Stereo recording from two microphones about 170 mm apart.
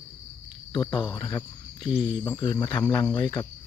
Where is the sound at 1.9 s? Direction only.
5° right (ahead or behind).